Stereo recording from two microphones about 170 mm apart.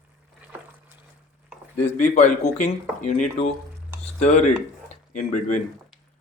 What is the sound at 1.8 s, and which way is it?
Speech, 45° left (ahead or behind).